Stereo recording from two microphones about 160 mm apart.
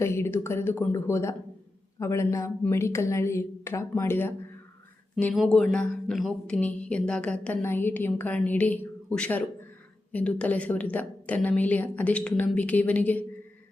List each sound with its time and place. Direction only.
0.0 s a woman's voice: 15° left (ahead or behind)
5.1 s a woman's voice: centre (ahead or behind)